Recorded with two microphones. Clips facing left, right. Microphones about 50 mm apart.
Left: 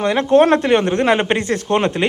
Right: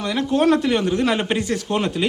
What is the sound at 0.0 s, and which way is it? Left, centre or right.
A woman's voice, left.